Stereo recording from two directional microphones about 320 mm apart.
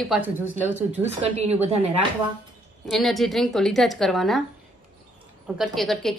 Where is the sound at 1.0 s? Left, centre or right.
Centre.